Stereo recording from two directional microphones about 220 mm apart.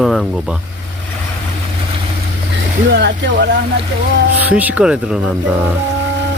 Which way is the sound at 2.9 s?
50° right (ahead or behind).